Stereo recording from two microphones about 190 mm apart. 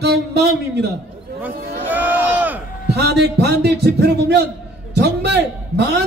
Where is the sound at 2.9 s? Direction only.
60° right (ahead or behind).